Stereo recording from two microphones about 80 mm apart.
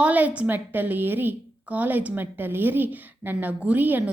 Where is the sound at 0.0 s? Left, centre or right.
Centre.